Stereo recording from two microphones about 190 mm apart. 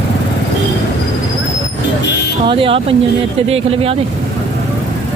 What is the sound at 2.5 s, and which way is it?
Speech, 30° right (ahead or behind).